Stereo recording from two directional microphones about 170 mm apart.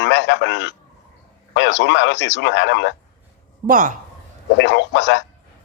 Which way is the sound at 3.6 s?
55° right (ahead or behind).